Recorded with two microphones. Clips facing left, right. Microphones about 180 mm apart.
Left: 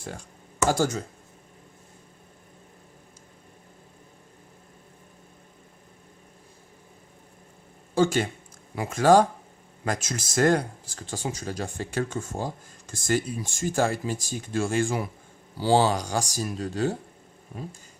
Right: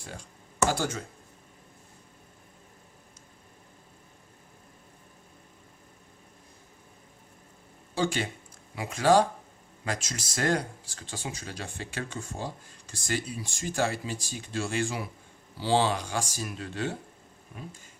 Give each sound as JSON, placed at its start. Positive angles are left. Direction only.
{"t": 0.7, "sound": "speech", "side_deg": 45}
{"t": 7.9, "sound": "speech", "side_deg": 50}